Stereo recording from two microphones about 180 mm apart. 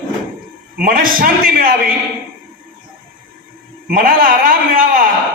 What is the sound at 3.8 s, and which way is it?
A man's voice, 50° right (ahead or behind).